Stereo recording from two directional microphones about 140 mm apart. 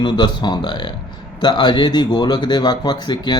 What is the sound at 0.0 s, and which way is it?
A man's voice, 35° left (ahead or behind).